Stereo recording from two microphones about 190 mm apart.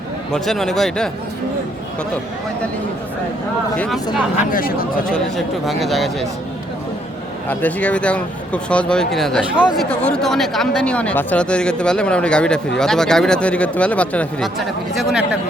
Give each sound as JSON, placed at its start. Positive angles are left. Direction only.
{"t": 0.3, "sound": "speech", "side_deg": 0}
{"t": 3.8, "sound": "speech", "side_deg": 0}
{"t": 4.5, "sound": "speech", "side_deg": 50}
{"t": 5.6, "sound": "speech", "side_deg": 0}
{"t": 7.4, "sound": "speech", "side_deg": 10}